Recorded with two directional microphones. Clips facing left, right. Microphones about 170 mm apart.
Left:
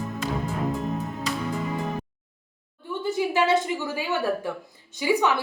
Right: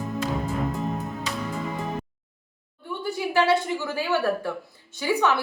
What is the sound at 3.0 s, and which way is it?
A woman's voice, 20° left (ahead or behind).